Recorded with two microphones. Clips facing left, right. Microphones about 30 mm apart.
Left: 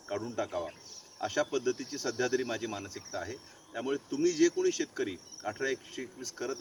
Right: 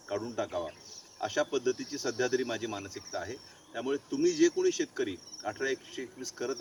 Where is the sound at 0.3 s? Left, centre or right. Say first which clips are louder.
Right 1 dB; centre.